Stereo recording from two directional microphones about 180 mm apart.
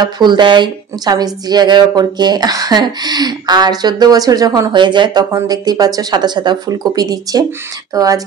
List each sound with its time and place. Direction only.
0.0 s speech: 25° right (ahead or behind)